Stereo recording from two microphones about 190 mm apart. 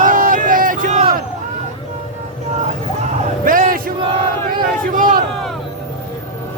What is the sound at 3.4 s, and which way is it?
Battle cry, 45° right (ahead or behind).